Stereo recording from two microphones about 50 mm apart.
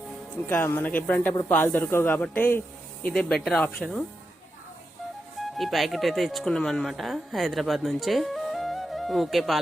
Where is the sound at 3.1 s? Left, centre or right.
Centre.